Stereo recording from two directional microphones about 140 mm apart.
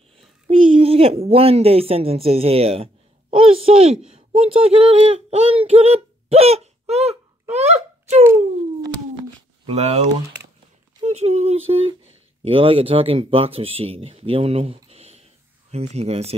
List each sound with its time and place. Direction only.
0.5 s a woman's voice: 40° right (ahead or behind)
9.7 s speech: 50° right (ahead or behind)
11.1 s speech: 50° right (ahead or behind)
14.9 s a sound: 50° right (ahead or behind)
15.7 s speech: 50° right (ahead or behind)